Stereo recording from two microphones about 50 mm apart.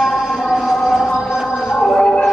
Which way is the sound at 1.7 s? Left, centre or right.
Centre.